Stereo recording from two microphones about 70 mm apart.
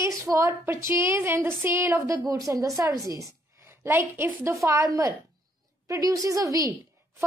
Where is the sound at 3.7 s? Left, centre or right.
Right.